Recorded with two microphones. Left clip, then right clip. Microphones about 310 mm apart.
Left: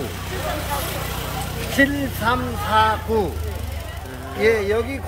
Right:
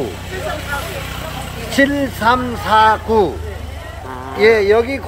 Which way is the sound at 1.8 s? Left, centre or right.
Centre.